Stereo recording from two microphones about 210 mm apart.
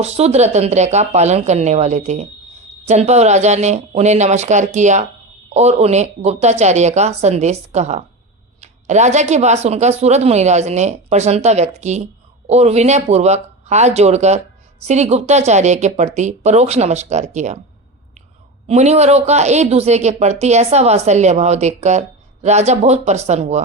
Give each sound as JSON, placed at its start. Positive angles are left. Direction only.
{"t": 0.0, "sound": "speech", "side_deg": -30}
{"t": 18.7, "sound": "speech", "side_deg": -30}